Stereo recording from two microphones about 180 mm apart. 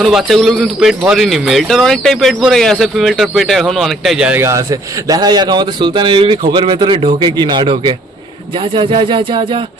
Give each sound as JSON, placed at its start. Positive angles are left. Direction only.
{"t": 0.0, "sound": "speech", "side_deg": 0}